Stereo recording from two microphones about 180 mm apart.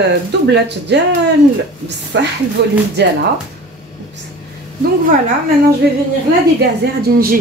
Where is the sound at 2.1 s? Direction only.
75° right (ahead or behind).